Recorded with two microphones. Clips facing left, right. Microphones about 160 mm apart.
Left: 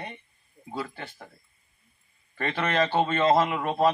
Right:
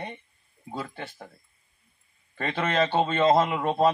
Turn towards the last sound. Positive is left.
turn(degrees=-25)  # may be behind; listen again after turning